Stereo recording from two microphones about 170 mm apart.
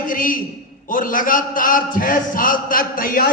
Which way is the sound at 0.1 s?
55° left (ahead or behind).